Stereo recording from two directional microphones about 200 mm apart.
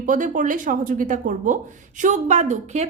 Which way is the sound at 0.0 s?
40° right (ahead or behind).